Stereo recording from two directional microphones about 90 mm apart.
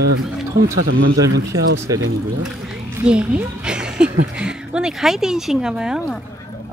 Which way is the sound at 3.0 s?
10° right (ahead or behind).